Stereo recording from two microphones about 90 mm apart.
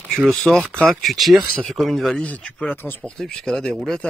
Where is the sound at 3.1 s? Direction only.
5° left (ahead or behind).